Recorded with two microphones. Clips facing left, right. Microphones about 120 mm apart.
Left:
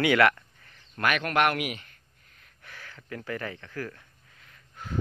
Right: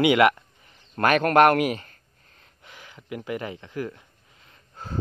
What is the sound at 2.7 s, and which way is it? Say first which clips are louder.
Speech: right 4 dB; 15° right (ahead or behind).